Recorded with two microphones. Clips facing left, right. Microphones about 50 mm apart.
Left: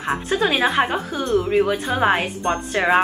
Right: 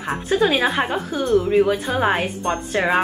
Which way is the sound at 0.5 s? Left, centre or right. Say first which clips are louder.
Left 1 dB; centre.